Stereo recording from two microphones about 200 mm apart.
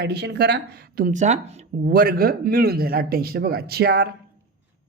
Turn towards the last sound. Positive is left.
turn(degrees=-50)  # may be behind; listen again after turning